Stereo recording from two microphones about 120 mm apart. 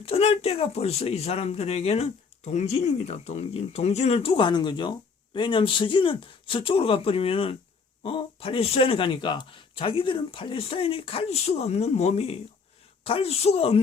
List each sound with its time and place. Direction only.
0.0 s speech: 55° left (ahead or behind)